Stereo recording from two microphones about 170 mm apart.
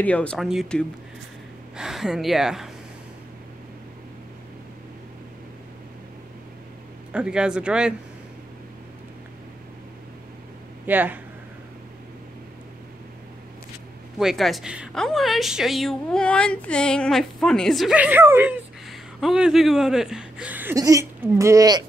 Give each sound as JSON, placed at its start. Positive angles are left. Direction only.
{"t": 0.0, "sound": "a woman's voice", "side_deg": 5}
{"t": 7.1, "sound": "a woman's voice", "side_deg": -5}
{"t": 10.9, "sound": "speech", "side_deg": -10}
{"t": 14.1, "sound": "a woman's voice", "side_deg": 0}
{"t": 20.7, "sound": "speech", "side_deg": -20}